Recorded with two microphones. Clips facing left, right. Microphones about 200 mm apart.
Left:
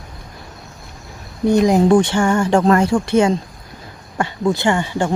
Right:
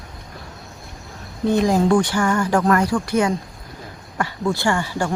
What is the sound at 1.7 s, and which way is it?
Speech, 20° left (ahead or behind).